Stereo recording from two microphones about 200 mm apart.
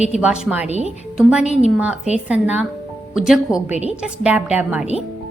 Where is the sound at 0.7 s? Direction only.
35° right (ahead or behind).